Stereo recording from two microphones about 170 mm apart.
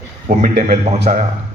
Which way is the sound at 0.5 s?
70° right (ahead or behind).